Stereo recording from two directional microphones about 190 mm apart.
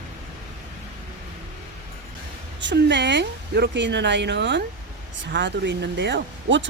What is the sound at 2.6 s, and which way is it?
Speech, 65° right (ahead or behind).